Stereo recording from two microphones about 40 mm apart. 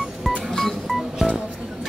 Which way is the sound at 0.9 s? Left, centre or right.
Centre.